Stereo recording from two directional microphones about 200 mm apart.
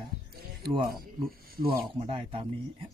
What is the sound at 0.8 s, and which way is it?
Speech, 45° right (ahead or behind).